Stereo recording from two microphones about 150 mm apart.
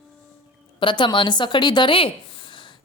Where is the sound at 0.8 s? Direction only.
35° left (ahead or behind).